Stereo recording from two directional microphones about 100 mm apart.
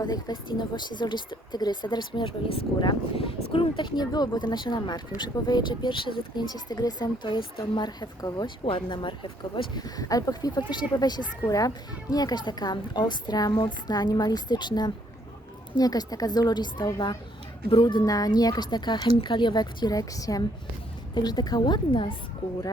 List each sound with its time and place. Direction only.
0.0 s speech: 45° left (ahead or behind)
8.6 s speech: 55° left (ahead or behind)
9.8 s speech: 35° left (ahead or behind)
17.7 s speech: 55° left (ahead or behind)